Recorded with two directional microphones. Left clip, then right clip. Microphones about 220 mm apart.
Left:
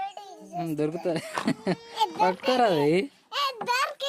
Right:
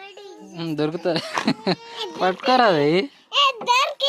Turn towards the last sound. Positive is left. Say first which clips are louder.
# right 7 dB
turn(degrees=55)  # may be behind; listen again after turning